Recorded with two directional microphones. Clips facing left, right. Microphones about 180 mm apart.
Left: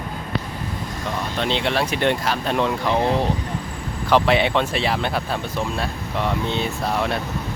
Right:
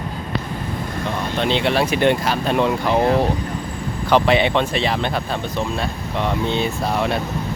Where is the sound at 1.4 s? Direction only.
Centre (ahead or behind).